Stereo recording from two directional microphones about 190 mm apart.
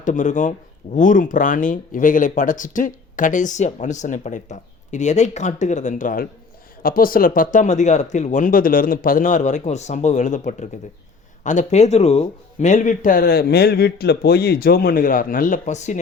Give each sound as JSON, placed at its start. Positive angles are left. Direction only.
{"t": 0.0, "sound": "a man's voice", "side_deg": 40}